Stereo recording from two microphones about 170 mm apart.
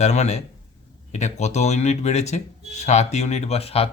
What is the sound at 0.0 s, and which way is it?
Speech, 40° left (ahead or behind).